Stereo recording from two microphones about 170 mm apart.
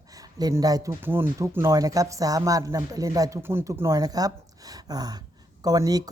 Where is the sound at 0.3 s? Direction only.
20° right (ahead or behind).